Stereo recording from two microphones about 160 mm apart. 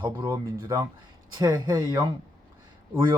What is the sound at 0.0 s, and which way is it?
Speech, 25° right (ahead or behind).